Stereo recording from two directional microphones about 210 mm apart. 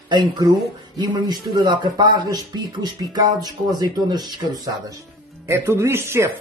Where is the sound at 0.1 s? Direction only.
20° right (ahead or behind).